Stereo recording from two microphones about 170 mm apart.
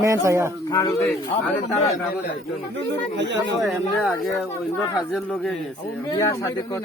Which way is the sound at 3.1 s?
90° right.